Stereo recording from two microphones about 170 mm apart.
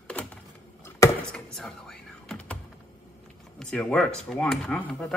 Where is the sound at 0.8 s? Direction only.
20° left (ahead or behind).